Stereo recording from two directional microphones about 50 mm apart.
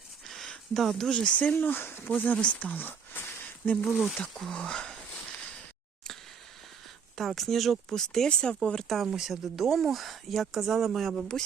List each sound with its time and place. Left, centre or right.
0.3 s a sound: centre
0.7 s speech: centre
1.1 s speech: left
1.5 s speech: left
2.0 s speech: left
2.7 s a sound: left
3.9 s speech: centre
4.5 s a sound: centre
7.2 s speech: centre
8.3 s speech: centre
8.9 s speech: centre